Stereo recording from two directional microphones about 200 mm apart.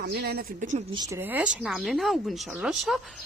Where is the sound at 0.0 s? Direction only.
55° right (ahead or behind); by 0.9 s 35° right (ahead or behind).